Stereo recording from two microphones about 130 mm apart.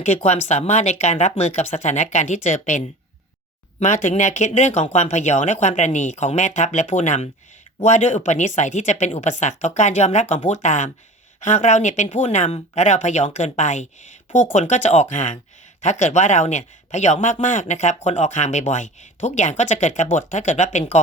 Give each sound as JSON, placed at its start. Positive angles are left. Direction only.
{"t": 0.2, "sound": "speech", "side_deg": 60}